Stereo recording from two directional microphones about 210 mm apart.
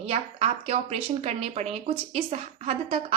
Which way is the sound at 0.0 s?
30° right (ahead or behind).